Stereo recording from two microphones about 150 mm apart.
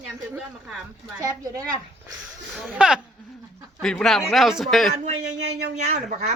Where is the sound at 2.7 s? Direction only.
5° right (ahead or behind).